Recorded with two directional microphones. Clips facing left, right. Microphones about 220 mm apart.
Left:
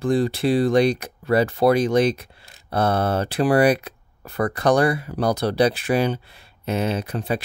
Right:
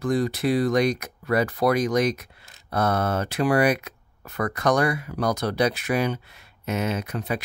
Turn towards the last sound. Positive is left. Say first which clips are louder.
# left 3 dB
turn(degrees=30)  # may be behind; listen again after turning